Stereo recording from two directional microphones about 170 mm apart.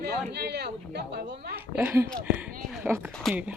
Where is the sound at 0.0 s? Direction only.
70° right (ahead or behind).